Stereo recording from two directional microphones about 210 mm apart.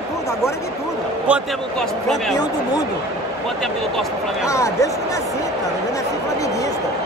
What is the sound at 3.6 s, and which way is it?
Speech, centre (ahead or behind).